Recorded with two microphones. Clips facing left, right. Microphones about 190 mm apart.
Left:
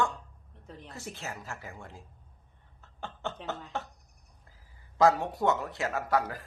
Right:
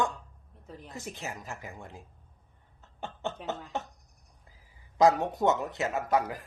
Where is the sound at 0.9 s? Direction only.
15° right (ahead or behind).